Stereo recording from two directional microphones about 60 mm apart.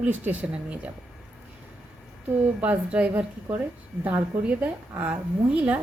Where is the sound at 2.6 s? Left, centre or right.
Right.